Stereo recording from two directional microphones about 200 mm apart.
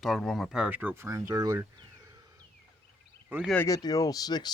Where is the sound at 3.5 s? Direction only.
15° left (ahead or behind).